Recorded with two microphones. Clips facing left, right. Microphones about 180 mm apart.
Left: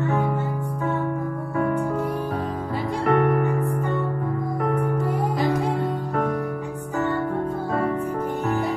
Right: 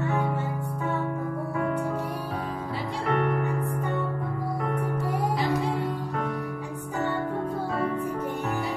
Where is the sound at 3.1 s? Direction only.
50° left (ahead or behind).